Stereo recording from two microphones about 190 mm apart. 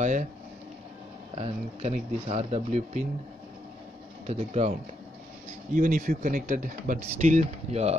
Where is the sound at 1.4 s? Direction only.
35° right (ahead or behind).